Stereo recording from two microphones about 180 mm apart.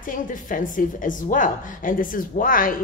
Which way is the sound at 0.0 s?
45° left (ahead or behind).